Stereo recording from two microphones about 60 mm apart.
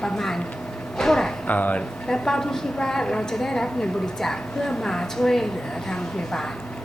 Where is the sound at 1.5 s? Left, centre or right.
Left.